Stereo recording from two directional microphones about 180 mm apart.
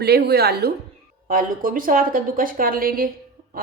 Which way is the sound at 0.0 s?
65° right (ahead or behind).